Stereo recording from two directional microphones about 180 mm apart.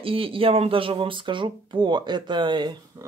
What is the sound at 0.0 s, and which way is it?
Speech, 30° right (ahead or behind).